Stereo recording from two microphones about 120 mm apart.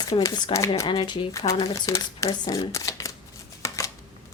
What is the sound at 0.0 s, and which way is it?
Speech, 30° left (ahead or behind).